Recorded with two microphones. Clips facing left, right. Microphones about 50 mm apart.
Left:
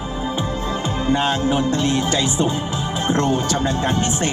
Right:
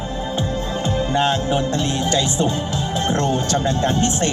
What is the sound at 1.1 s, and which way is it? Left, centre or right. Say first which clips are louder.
Speech: left 2 dB; centre.